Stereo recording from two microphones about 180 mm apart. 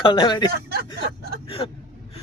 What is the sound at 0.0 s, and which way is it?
Speech, 25° left (ahead or behind).